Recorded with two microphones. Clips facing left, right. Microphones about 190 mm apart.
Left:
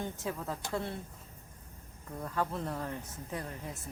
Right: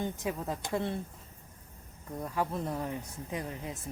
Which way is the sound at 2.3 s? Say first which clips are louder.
Right 1 dB; 15° right (ahead or behind).